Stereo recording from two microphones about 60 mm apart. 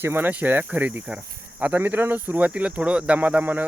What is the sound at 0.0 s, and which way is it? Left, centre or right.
Speech, right.